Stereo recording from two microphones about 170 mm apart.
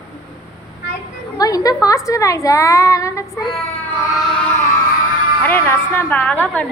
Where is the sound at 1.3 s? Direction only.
20° left (ahead or behind).